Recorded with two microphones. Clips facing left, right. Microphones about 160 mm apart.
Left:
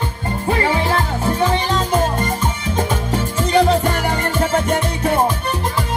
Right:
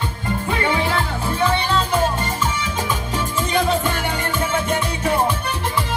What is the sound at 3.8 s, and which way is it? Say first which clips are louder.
Music: left 4 dB; 40° left (ahead or behind).